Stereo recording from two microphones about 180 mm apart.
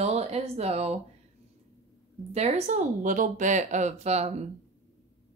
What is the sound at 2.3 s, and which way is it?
Speech, 35° right (ahead or behind).